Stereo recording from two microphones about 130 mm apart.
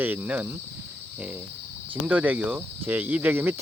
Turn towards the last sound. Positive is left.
turn(degrees=-15)  # may be behind; listen again after turning